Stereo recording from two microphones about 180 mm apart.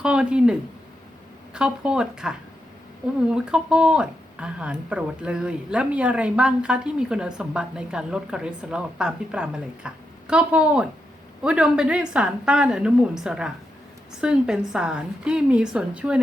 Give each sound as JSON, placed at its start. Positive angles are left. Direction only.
{"t": 0.0, "sound": "speech", "side_deg": -5}
{"t": 1.5, "sound": "speech", "side_deg": -5}